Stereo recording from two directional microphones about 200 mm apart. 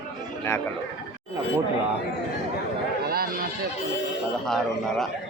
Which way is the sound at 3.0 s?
50° right (ahead or behind).